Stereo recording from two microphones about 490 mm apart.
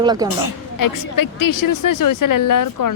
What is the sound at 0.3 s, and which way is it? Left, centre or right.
Speech, left.